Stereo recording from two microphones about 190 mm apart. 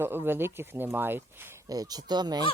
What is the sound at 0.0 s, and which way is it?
Speech, 10° right (ahead or behind).